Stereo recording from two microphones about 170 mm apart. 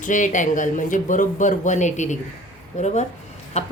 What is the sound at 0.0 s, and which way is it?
A woman's voice, 50° left (ahead or behind).